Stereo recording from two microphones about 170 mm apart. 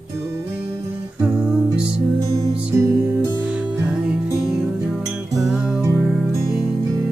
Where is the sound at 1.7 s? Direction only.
5° right (ahead or behind).